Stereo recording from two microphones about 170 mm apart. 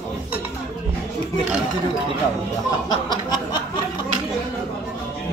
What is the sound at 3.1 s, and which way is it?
Speech, 25° left (ahead or behind).